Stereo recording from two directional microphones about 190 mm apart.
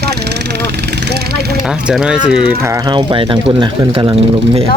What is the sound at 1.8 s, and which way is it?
Speech, 5° right (ahead or behind).